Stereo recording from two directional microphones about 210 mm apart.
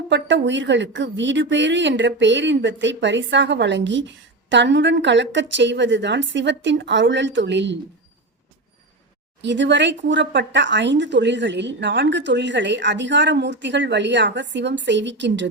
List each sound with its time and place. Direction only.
0.1 s speech: 60° right (ahead or behind)
9.4 s speech: 55° right (ahead or behind)